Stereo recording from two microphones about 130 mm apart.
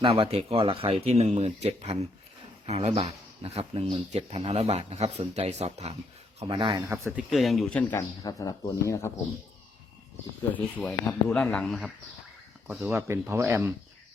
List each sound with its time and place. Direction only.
0.0 s speech: 45° right (ahead or behind)
6.4 s speech: 40° right (ahead or behind)
6.8 s speech: 15° right (ahead or behind)
7.3 s speech: centre (ahead or behind)
7.8 s speech: 15° left (ahead or behind)
8.2 s speech: 30° left (ahead or behind)
10.5 s speech: 10° left (ahead or behind)
12.9 s speech: 20° right (ahead or behind)